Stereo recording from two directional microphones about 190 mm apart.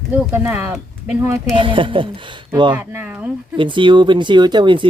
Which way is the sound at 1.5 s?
25° right (ahead or behind).